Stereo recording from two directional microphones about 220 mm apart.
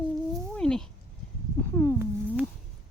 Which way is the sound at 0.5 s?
5° left (ahead or behind).